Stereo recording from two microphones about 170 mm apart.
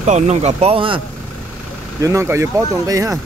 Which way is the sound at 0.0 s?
40° right (ahead or behind).